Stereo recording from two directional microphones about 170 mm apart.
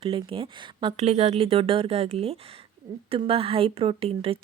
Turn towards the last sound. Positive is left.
turn(degrees=-35)  # may be behind; listen again after turning